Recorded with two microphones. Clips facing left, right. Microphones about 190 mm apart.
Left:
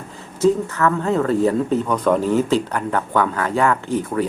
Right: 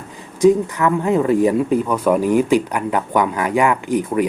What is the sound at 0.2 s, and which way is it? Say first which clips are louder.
Speech: right 4 dB; 15° right (ahead or behind).